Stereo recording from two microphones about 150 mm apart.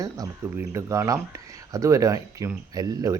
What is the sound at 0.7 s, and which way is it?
Speech, 20° right (ahead or behind).